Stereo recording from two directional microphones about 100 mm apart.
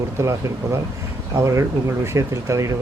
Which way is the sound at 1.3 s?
30° right (ahead or behind).